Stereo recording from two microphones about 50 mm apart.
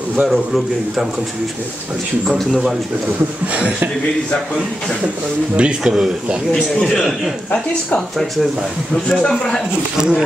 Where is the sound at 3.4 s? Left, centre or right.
Right.